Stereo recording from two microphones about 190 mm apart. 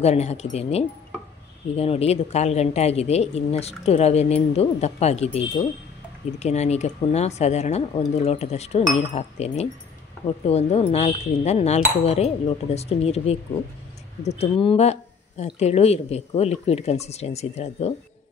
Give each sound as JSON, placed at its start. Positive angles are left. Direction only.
{"t": 0.0, "sound": "speech", "side_deg": 35}